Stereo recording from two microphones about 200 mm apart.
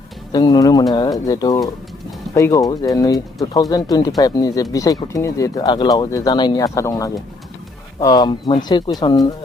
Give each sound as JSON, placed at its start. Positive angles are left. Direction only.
{"t": 0.3, "sound": "speech", "side_deg": 20}